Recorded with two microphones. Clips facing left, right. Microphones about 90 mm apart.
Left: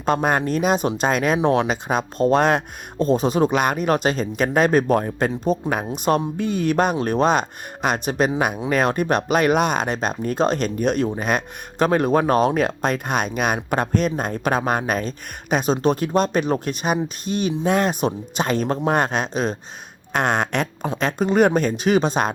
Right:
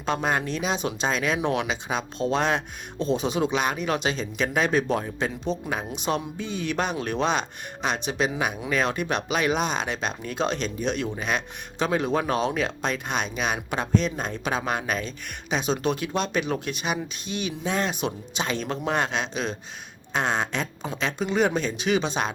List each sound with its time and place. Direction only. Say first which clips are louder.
0.0 s speech: left 6 dB; 50° left (ahead or behind)
1.4 s speech: left 7 dB; 35° left (ahead or behind)
1.6 s speech: left 6 dB; 50° left (ahead or behind)
20.1 s speech: left 5 dB; 60° left (ahead or behind)
21.0 s speech: left 6 dB; 45° left (ahead or behind)